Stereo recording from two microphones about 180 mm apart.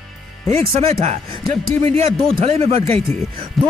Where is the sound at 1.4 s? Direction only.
Centre (ahead or behind).